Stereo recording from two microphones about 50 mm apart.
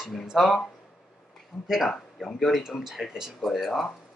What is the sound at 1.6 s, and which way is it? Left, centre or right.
Speech, centre.